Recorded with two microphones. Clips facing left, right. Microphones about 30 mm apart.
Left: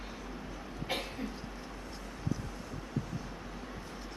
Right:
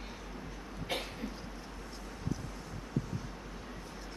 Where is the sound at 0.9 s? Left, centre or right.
Centre.